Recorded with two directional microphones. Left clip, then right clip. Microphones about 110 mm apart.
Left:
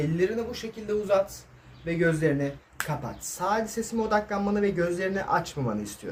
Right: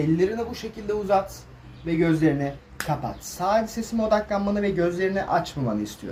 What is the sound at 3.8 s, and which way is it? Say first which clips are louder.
Speech: right 3 dB; 40° left (ahead or behind).